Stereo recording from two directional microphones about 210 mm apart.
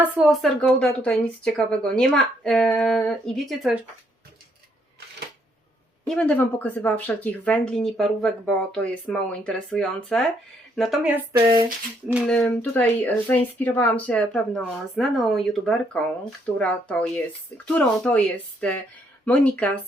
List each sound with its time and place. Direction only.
0.0 s speech: centre (ahead or behind)
6.1 s speech: 5° left (ahead or behind)
11.4 s a sound: 25° right (ahead or behind)
12.2 s speech: 5° left (ahead or behind)